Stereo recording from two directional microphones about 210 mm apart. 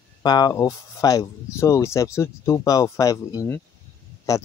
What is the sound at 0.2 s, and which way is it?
Speech, 20° left (ahead or behind).